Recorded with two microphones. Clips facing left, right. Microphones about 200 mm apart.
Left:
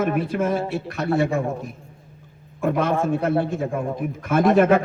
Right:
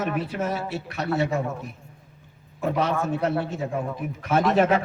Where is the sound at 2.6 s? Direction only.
50° left (ahead or behind).